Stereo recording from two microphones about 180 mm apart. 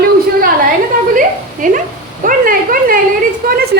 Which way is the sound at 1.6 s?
50° right (ahead or behind).